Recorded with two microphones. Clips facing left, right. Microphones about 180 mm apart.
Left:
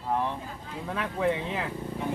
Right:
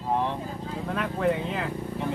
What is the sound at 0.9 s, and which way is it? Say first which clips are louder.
Speech: right 2 dB; centre (ahead or behind).